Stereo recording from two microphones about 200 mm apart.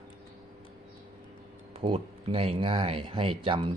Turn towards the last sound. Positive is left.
turn(degrees=-25)  # may be behind; listen again after turning